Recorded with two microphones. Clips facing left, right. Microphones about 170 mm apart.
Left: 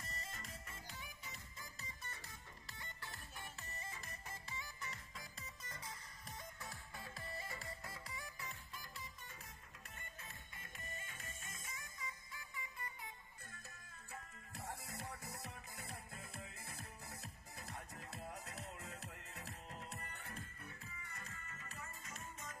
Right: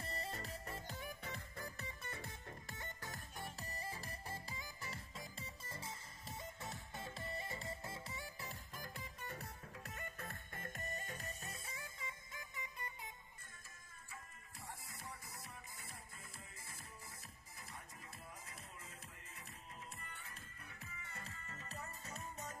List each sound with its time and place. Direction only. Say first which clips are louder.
0.0 s music: right 6 dB; 30° right (ahead or behind)
8.7 s music: right 3 dB; 55° right (ahead or behind); by 13.1 s 20° right (ahead or behind)
15.0 s music: left 4 dB; 65° left (ahead or behind)
17.6 s music: left 4 dB; 70° left (ahead or behind)
21.0 s music: right 1 dB; 30° right (ahead or behind)